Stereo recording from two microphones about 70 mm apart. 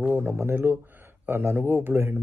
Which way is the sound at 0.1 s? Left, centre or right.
Right.